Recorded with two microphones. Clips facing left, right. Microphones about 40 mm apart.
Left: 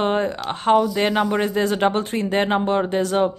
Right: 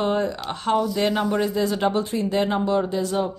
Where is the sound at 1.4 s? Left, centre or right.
Left.